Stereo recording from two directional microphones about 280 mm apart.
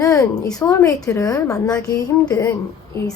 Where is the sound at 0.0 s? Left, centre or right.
Centre.